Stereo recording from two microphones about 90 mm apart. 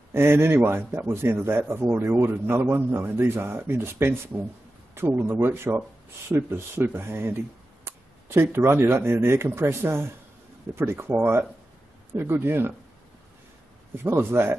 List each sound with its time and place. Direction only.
0.1 s a man's voice: 25° right (ahead or behind)
13.9 s a man's voice: 25° right (ahead or behind)